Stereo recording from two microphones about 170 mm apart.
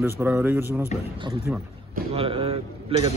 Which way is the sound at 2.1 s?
30° right (ahead or behind).